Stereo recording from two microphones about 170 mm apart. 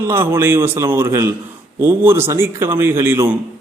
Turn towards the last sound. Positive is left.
turn(degrees=-15)  # may be behind; listen again after turning